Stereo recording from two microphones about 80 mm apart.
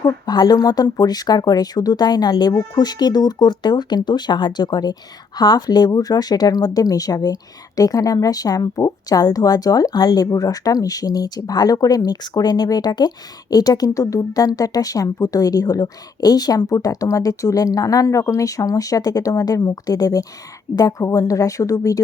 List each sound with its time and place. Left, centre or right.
0.0 s speech: left